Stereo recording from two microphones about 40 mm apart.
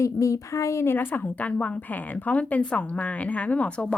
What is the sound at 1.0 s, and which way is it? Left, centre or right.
Speech, left.